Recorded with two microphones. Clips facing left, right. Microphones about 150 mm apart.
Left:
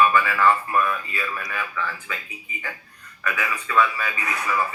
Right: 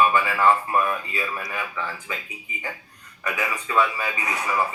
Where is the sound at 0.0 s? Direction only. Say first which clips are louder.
Left 1 dB; 25° right (ahead or behind).